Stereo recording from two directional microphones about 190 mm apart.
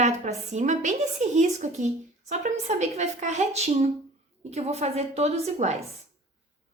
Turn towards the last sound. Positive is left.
turn(degrees=-35)  # may be behind; listen again after turning